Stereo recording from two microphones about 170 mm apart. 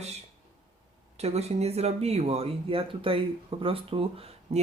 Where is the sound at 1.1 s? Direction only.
40° right (ahead or behind).